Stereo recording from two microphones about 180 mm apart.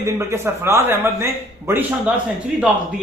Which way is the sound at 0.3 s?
15° right (ahead or behind).